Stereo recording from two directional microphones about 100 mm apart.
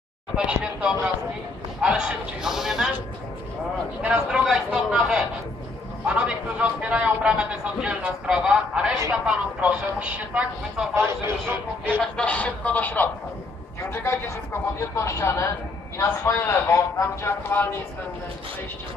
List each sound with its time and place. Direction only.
0.5 s a man's voice: 10° right (ahead or behind)
4.0 s a man's voice: 10° right (ahead or behind)
11.0 s a man's voice: 25° right (ahead or behind)
12.0 s speech: 10° left (ahead or behind)